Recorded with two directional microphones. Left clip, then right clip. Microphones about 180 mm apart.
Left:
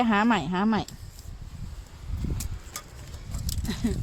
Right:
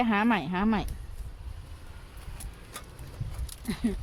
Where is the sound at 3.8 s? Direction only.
25° left (ahead or behind).